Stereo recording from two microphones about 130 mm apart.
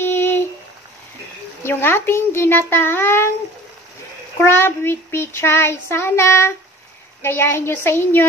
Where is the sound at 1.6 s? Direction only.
15° left (ahead or behind).